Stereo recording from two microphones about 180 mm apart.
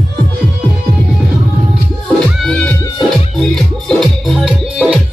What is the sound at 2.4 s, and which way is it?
Music, 5° left (ahead or behind).